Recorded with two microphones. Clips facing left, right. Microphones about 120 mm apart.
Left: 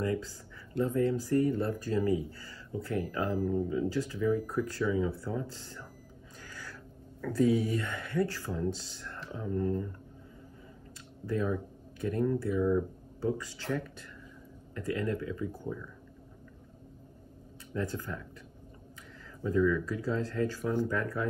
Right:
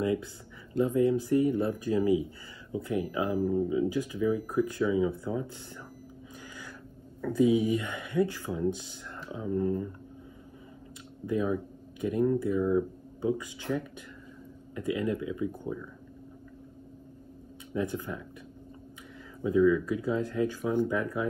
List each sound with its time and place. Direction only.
0.0 s speech: 20° right (ahead or behind)
7.2 s speech: 15° right (ahead or behind)
11.2 s speech: 10° right (ahead or behind)
17.7 s speech: 20° right (ahead or behind)
19.4 s speech: 15° right (ahead or behind)